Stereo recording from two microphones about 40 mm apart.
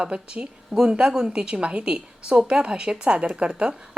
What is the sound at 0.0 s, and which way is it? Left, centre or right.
A woman's voice, right.